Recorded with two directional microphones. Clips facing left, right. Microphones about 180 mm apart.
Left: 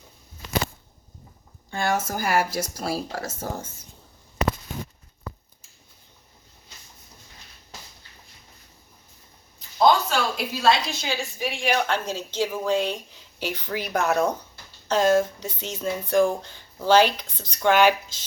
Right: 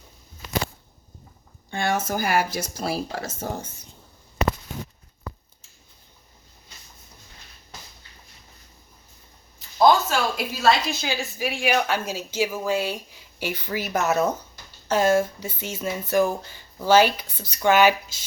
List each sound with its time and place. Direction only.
1.8 s speech: 20° right (ahead or behind)
9.8 s a woman's voice: 5° right (ahead or behind)